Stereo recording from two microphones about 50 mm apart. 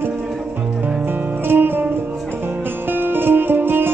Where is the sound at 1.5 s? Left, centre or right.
Right.